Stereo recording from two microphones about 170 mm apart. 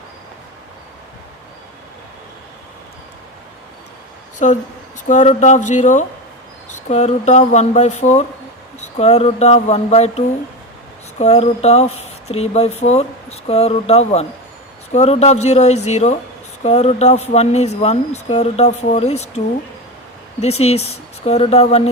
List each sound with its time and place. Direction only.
4.4 s speech: 45° left (ahead or behind)
20.4 s speech: 35° left (ahead or behind)